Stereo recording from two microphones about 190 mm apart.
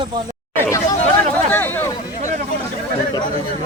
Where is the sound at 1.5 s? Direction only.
10° left (ahead or behind).